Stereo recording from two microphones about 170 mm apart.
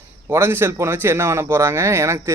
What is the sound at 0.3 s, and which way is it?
A man's voice, 15° right (ahead or behind).